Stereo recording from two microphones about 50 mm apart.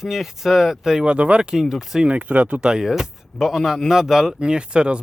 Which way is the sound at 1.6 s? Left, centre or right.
Centre.